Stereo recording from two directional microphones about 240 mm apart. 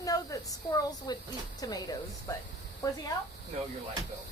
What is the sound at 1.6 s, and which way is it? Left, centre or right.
Speech, centre.